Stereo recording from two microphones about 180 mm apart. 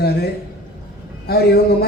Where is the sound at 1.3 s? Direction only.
60° left (ahead or behind).